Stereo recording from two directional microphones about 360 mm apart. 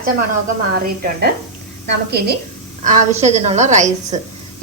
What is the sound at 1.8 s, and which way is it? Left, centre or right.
A woman's voice, right.